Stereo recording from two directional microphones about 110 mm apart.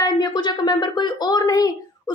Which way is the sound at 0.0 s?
40° left (ahead or behind).